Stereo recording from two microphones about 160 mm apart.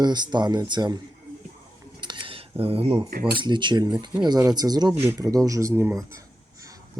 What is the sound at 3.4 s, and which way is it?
Speech, 30° right (ahead or behind).